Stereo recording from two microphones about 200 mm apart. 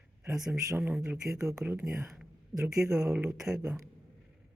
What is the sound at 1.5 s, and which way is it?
Speech, 5° right (ahead or behind).